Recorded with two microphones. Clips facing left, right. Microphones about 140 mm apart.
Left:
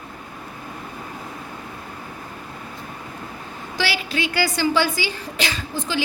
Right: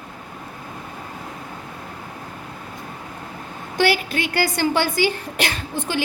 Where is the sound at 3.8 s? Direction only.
55° right (ahead or behind).